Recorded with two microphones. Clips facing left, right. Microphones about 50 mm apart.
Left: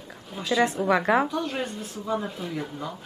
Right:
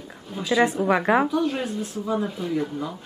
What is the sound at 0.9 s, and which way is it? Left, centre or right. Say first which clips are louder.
Speech: right 2 dB; centre.